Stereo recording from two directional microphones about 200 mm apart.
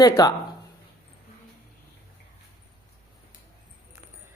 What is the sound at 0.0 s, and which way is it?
Speech, 20° left (ahead or behind).